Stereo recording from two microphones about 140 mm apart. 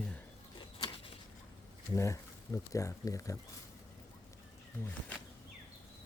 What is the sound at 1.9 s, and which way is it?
Speech, 20° left (ahead or behind).